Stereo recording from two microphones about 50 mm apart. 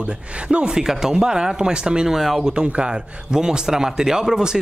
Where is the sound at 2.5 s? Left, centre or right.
Centre.